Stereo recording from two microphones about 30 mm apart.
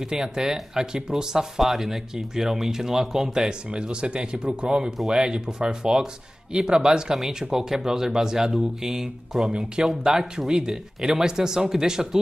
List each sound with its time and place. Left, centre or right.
0.1 s speech: centre
7.2 s speech: centre
9.5 s speech: right